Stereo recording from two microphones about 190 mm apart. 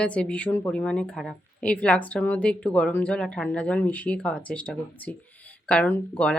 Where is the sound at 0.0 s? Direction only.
5° left (ahead or behind).